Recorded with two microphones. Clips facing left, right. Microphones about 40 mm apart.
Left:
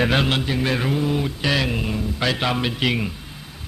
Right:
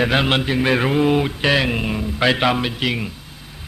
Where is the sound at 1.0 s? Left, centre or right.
Right.